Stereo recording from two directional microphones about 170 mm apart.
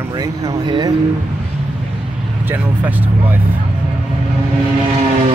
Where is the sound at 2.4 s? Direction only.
10° right (ahead or behind).